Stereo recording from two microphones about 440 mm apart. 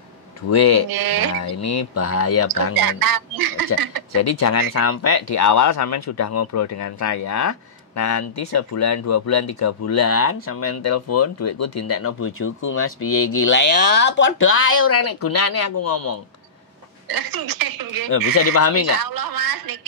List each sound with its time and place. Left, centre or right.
0.5 s speech: left
0.8 s a woman's voice: right
1.3 s speech: left
2.8 s a woman's voice: right
4.1 s speech: left
17.1 s a woman's voice: right
18.1 s speech: left
19.0 s a woman's voice: right